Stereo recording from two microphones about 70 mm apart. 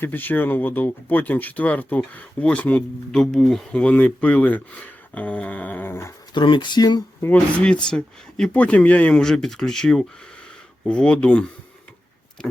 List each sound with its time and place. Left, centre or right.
0.0 s speech: left
3.1 s speech: centre
3.8 s speech: centre
5.9 s speech: left
6.3 s speech: left
7.3 s speech: centre